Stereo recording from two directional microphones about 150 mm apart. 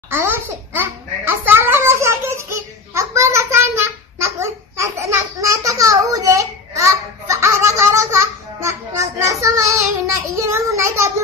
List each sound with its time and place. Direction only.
0.1 s babbling: 15° right (ahead or behind)
9.4 s child singing: 20° right (ahead or behind)